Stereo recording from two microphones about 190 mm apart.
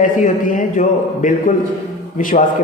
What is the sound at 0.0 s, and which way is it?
A man's voice, 45° left (ahead or behind).